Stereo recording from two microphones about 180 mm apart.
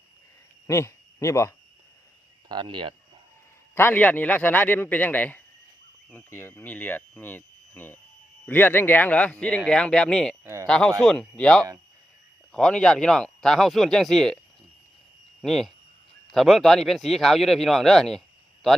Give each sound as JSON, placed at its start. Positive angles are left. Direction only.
{"t": 0.7, "sound": "speech", "side_deg": 15}
{"t": 2.5, "sound": "speech", "side_deg": -25}
{"t": 3.8, "sound": "speech", "side_deg": 10}
{"t": 10.4, "sound": "speech", "side_deg": -15}
{"t": 10.7, "sound": "speech", "side_deg": 5}
{"t": 15.4, "sound": "speech", "side_deg": 0}